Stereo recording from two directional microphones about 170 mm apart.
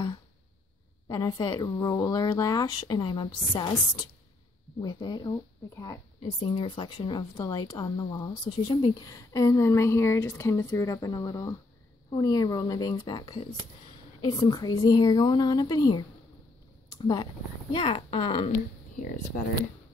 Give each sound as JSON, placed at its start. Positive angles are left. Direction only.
{"t": 1.0, "sound": "speech", "side_deg": 25}
{"t": 6.4, "sound": "speech", "side_deg": 30}
{"t": 18.9, "sound": "speech", "side_deg": 50}